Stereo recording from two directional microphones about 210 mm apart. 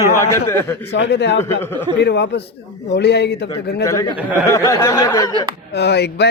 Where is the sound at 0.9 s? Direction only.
55° left (ahead or behind).